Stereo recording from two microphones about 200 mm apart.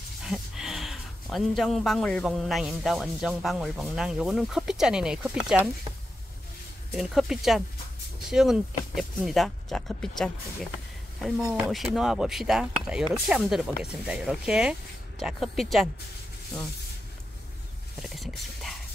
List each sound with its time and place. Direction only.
0.2 s speech: 5° right (ahead or behind)
6.9 s speech: centre (ahead or behind)
18.1 s speech: centre (ahead or behind)